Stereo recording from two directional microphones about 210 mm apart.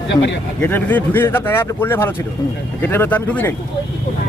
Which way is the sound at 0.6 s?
10° left (ahead or behind).